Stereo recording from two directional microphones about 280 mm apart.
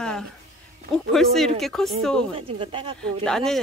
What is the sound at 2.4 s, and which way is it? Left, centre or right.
Speech, centre.